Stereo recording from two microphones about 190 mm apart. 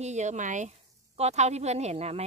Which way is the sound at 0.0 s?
40° right (ahead or behind).